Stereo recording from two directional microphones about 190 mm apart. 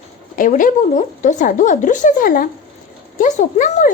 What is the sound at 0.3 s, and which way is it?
Speech, 45° left (ahead or behind).